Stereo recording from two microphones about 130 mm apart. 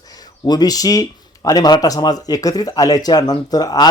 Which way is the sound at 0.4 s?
30° left (ahead or behind).